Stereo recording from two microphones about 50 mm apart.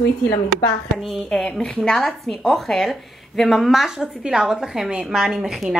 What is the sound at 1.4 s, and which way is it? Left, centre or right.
A woman's voice, centre.